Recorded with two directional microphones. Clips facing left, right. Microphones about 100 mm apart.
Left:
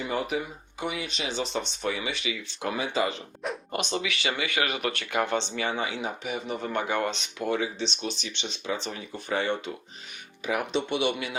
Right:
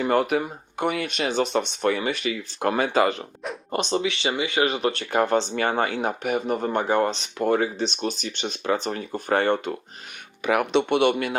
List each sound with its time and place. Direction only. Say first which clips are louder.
0.0 s speech: right 8 dB; 65° right (ahead or behind)
3.7 s speech: right 8 dB; 35° right (ahead or behind); by 6.7 s 50° right (ahead or behind)
6.7 s speech: right 5 dB; 35° right (ahead or behind); by 9.7 s 55° right (ahead or behind)
10.4 s speech: right 7 dB; 70° right (ahead or behind)